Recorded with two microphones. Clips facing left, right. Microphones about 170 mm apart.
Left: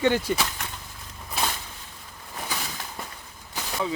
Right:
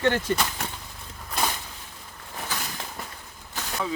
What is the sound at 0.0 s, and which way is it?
Speech, 10° left (ahead or behind).